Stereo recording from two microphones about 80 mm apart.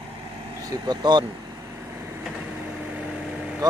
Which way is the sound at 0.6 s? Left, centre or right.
Right.